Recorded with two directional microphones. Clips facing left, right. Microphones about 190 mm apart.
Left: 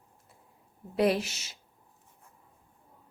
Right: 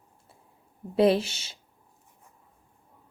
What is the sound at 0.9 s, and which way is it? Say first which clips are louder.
Speech: right 5 dB; 25° right (ahead or behind).